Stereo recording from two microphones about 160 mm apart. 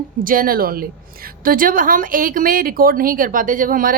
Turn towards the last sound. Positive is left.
turn(degrees=-60)  # may be behind; listen again after turning